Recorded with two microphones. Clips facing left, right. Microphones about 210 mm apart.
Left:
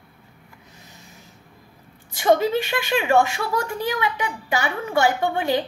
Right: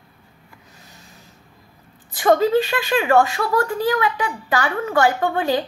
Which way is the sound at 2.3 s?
15° left (ahead or behind).